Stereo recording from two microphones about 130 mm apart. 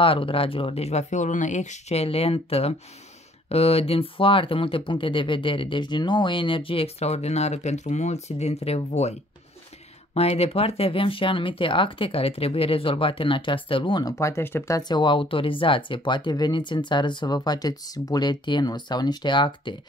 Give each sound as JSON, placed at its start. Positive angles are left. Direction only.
{"t": 0.0, "sound": "speech", "side_deg": 45}
{"t": 10.1, "sound": "speech", "side_deg": 50}